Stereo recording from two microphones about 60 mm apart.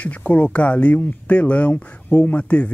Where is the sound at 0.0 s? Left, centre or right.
Left.